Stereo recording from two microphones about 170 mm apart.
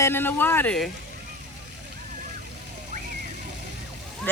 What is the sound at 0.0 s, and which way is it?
Speech, 15° left (ahead or behind).